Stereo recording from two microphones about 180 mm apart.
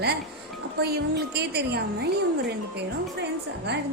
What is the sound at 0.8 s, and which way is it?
Speech, 60° right (ahead or behind).